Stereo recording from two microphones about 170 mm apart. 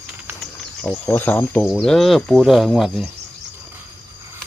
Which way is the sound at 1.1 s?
10° left (ahead or behind).